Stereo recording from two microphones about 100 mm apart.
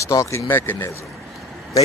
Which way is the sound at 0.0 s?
30° left (ahead or behind).